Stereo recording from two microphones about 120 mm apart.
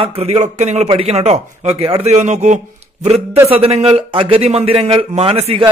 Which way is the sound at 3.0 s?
65° right (ahead or behind).